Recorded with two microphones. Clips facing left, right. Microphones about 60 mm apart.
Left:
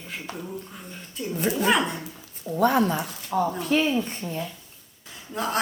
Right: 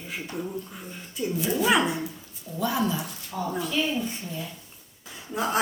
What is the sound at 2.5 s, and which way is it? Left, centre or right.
A woman's voice, left.